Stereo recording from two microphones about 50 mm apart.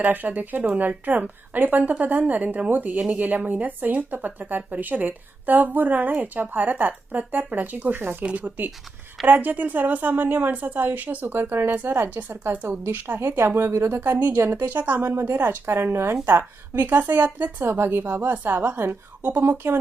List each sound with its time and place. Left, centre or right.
0.0 s speech: right
8.2 s a woman's voice: right
16.2 s speech: right
17.6 s speech: right
18.6 s speech: right
19.6 s speech: right